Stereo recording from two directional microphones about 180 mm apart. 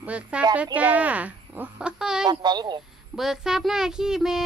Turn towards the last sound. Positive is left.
turn(degrees=0)  # may be behind; listen again after turning